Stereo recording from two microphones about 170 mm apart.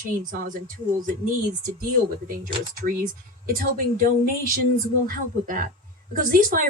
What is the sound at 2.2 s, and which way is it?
Speech, 55° right (ahead or behind).